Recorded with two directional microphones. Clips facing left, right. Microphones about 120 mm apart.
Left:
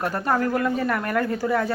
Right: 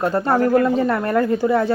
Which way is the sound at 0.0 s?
25° right (ahead or behind).